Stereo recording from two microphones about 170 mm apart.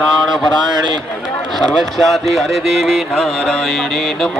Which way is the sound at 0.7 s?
25° right (ahead or behind).